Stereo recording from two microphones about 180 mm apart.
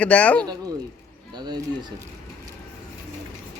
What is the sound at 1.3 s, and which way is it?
Speech, 25° right (ahead or behind).